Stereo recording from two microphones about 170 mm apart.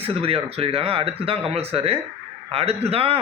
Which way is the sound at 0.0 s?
35° right (ahead or behind).